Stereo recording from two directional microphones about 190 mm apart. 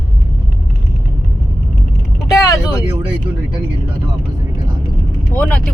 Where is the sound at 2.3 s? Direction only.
15° left (ahead or behind).